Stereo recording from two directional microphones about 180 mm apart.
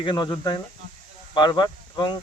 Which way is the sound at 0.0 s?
25° left (ahead or behind).